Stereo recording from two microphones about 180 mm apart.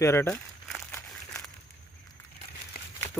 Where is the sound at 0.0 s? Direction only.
15° left (ahead or behind).